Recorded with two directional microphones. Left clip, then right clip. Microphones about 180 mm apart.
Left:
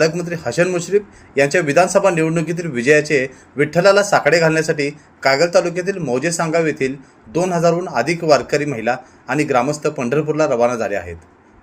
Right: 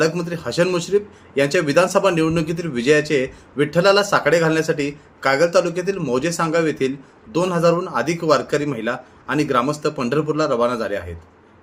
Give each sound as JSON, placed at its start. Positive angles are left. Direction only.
{"t": 0.2, "sound": "speech", "side_deg": 5}